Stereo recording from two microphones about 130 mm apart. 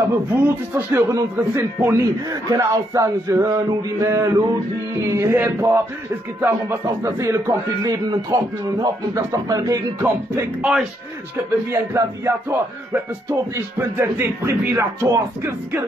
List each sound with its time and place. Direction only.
0.1 s a man's voice: 20° right (ahead or behind)
10.6 s a man's voice: 5° right (ahead or behind)
11.7 s a man's voice: 20° right (ahead or behind)